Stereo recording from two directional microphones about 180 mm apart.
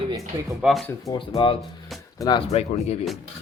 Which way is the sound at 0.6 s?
Centre (ahead or behind).